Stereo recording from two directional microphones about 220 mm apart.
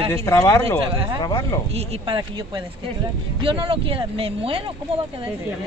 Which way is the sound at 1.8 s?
25° right (ahead or behind).